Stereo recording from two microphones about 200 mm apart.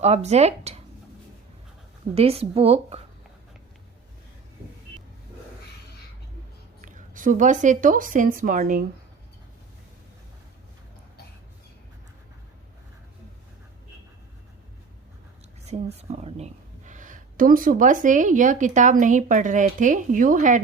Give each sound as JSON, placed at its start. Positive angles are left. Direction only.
{"t": 0.0, "sound": "speech", "side_deg": -35}
{"t": 2.1, "sound": "speech", "side_deg": -30}
{"t": 6.8, "sound": "a woman's voice", "side_deg": -40}
{"t": 16.0, "sound": "speech", "side_deg": -30}